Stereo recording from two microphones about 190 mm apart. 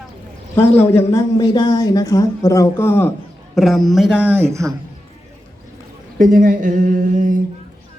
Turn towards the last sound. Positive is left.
turn(degrees=-45)  # may be behind; listen again after turning